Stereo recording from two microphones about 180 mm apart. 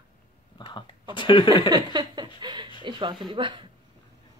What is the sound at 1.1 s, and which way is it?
Speech, 25° left (ahead or behind).